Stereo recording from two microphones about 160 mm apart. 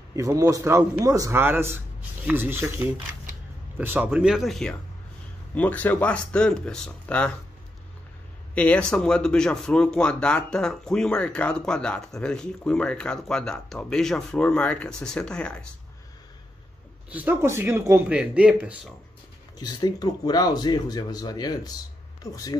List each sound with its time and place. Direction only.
0.1 s a man's voice: 20° right (ahead or behind); by 7.3 s 5° left (ahead or behind)
8.5 s speech: 10° left (ahead or behind)
17.1 s a man's voice: 10° right (ahead or behind)
19.6 s speech: 25° left (ahead or behind)